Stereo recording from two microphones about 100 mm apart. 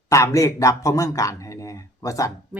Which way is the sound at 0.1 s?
30° left (ahead or behind).